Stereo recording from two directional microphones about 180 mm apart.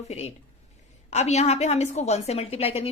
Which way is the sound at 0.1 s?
35° left (ahead or behind).